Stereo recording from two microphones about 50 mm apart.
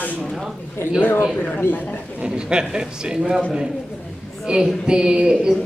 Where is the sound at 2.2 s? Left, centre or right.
Centre.